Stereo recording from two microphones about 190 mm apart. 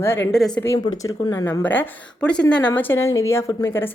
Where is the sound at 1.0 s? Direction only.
15° left (ahead or behind).